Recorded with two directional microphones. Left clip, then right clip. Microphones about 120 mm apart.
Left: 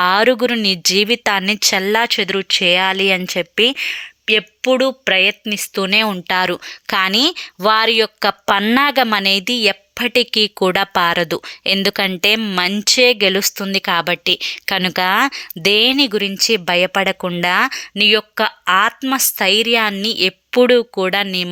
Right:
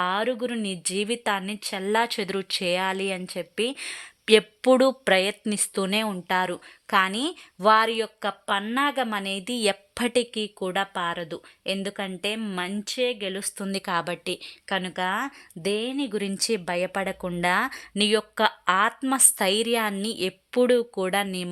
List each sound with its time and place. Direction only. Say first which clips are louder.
0.0 s a woman's voice: left 12 dB; 35° left (ahead or behind)
1.8 s a woman's voice: left 9 dB; 15° left (ahead or behind)
3.8 s speech: left 14 dB; centre (ahead or behind)
5.7 s a woman's voice: left 11 dB; 10° left (ahead or behind)
8.3 s speech: left 12 dB; 45° left (ahead or behind); by 9.4 s 30° left (ahead or behind)
9.5 s a woman's voice: left 10 dB; 5° left (ahead or behind)
10.6 s speech: left 9 dB; 40° left (ahead or behind)
11.8 s a woman's voice: left 14 dB; 45° left (ahead or behind)
12.0 s speech: left 15 dB; 35° left (ahead or behind)
13.6 s a woman's voice: left 10 dB; 15° left (ahead or behind)
14.8 s speech: left 13 dB; 40° left (ahead or behind)
16.3 s a woman's voice: left 11 dB; 10° left (ahead or behind)
16.6 s a woman's voice: left 12 dB; 20° left (ahead or behind)
17.7 s a woman's voice: left 10 dB; 5° left (ahead or behind)